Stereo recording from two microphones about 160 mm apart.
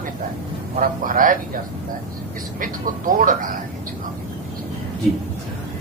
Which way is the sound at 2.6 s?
55° right (ahead or behind).